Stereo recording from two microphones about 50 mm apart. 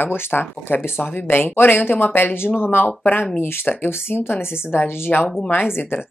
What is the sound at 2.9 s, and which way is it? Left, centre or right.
Speech, left.